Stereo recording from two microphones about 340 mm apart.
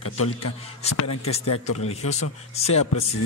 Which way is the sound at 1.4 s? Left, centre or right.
Left.